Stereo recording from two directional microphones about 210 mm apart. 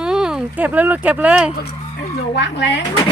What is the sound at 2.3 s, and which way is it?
Speech, 55° left (ahead or behind).